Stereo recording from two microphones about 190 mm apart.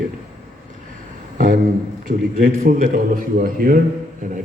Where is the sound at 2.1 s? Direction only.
45° right (ahead or behind).